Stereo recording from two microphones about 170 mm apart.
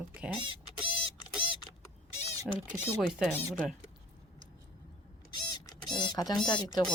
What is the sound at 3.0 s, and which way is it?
Speech, centre (ahead or behind).